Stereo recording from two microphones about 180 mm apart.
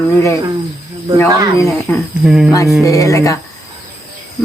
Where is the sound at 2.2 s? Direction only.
5° right (ahead or behind).